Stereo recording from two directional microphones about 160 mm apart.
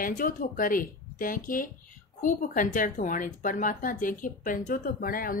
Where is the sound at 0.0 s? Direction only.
60° left (ahead or behind).